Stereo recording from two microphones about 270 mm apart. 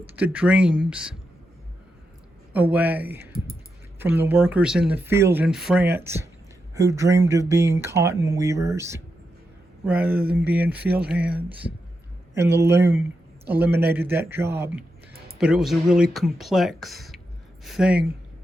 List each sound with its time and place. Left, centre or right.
0.1 s speech: centre
2.5 s speech: centre